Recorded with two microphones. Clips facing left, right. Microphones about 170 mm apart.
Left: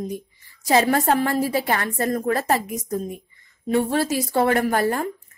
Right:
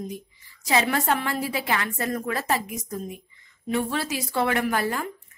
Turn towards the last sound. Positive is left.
turn(degrees=45)  # may be behind; listen again after turning